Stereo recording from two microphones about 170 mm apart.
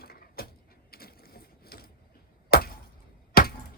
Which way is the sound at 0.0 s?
65° left (ahead or behind).